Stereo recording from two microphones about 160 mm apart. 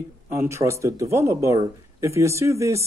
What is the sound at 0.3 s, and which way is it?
Speech, 15° right (ahead or behind).